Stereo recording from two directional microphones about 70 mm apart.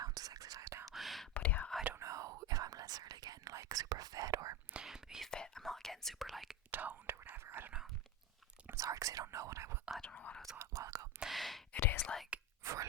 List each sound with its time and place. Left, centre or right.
0.0 s whispering: right
0.9 s whispering: centre
1.3 s whispering: left
2.0 s whispering: right
4.7 s whispering: centre
5.3 s whispering: centre
6.7 s whispering: right
8.7 s whispering: right
10.0 s whispering: centre
10.8 s whispering: right
11.2 s whispering: centre
11.8 s whispering: left
12.3 s whispering: centre